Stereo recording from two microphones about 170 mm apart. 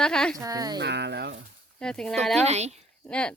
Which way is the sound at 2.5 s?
40° right (ahead or behind).